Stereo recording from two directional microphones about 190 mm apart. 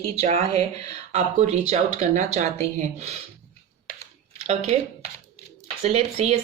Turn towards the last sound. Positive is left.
turn(degrees=-35)  # may be behind; listen again after turning